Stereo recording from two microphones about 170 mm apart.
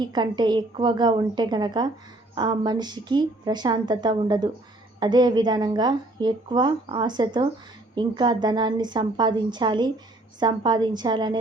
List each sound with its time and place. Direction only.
0.0 s speech: 25° right (ahead or behind)